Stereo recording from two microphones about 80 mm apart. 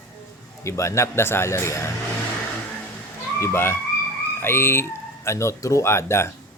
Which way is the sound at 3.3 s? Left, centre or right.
Left.